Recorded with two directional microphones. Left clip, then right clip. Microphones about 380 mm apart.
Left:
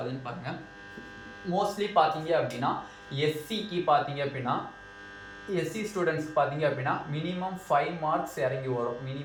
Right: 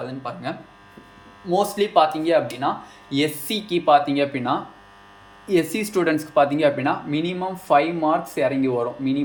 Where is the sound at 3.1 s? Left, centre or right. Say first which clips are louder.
Right 9 dB; right.